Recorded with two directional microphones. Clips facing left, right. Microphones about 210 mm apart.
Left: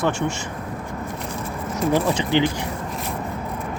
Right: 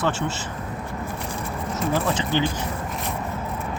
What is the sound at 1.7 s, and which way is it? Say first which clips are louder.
Speech: left 4 dB; 15° left (ahead or behind).